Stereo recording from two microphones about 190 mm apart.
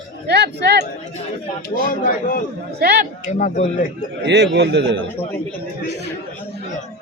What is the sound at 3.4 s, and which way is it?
Speech, 40° left (ahead or behind).